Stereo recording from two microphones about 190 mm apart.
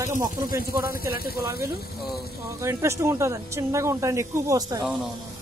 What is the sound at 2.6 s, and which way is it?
Speech, 15° right (ahead or behind).